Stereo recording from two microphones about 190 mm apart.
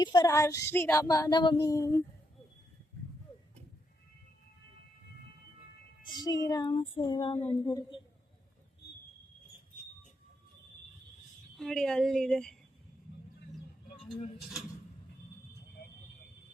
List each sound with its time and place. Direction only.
0.0 s child singing: 20° left (ahead or behind)
6.1 s child singing: 20° left (ahead or behind)
11.5 s a woman's voice: 5° left (ahead or behind)
14.0 s speech: 5° left (ahead or behind)